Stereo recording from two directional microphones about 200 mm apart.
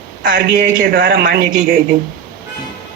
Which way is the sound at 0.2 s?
45° right (ahead or behind).